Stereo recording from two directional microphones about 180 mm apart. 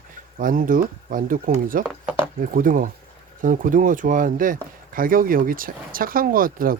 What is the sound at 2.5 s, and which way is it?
Speech, 50° right (ahead or behind).